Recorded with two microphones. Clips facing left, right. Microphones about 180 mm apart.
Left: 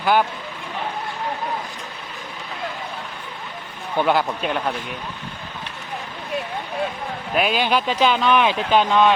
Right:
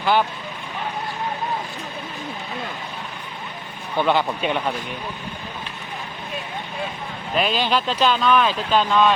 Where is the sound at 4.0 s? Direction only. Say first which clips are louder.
Even; 5° left (ahead or behind).